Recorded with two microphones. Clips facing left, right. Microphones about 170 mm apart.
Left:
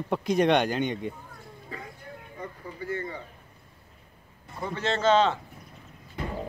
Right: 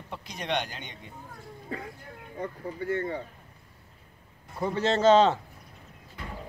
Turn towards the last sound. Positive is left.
turn(degrees=-40)  # may be behind; listen again after turning